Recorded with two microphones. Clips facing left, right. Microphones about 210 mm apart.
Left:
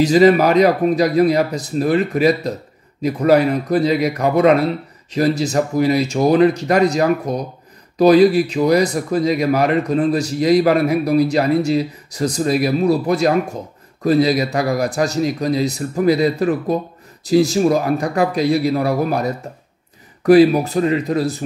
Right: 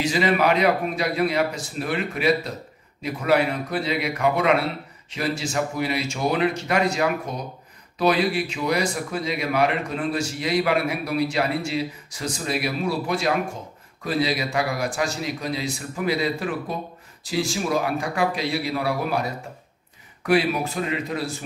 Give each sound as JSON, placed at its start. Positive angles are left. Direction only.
{"t": 0.0, "sound": "speech", "side_deg": 40}
{"t": 20.2, "sound": "speech", "side_deg": 40}